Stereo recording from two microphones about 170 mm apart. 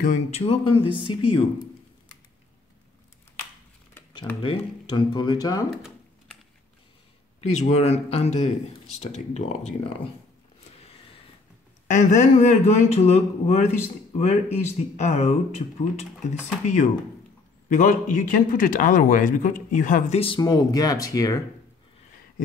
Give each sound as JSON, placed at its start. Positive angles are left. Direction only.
{"t": 0.0, "sound": "speech", "side_deg": 45}
{"t": 4.4, "sound": "speech", "side_deg": 30}
{"t": 5.7, "sound": "a sound", "side_deg": 0}
{"t": 7.3, "sound": "speech", "side_deg": 40}
{"t": 11.9, "sound": "speech", "side_deg": 45}
{"t": 17.6, "sound": "speech", "side_deg": 50}
{"t": 20.2, "sound": "speech", "side_deg": 30}